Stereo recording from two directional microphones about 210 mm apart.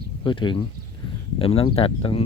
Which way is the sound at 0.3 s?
20° left (ahead or behind).